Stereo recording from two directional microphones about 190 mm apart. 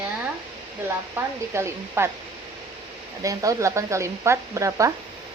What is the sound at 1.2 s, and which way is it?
Speech, 15° right (ahead or behind).